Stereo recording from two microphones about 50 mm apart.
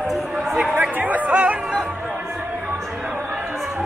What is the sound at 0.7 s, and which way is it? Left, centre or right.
Music, right.